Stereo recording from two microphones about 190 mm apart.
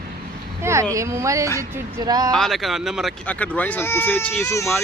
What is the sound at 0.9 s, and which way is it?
Speech, 15° right (ahead or behind).